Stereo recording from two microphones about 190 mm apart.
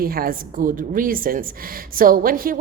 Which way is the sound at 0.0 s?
50° right (ahead or behind).